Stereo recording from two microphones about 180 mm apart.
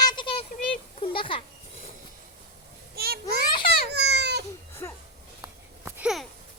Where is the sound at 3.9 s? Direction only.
70° right (ahead or behind).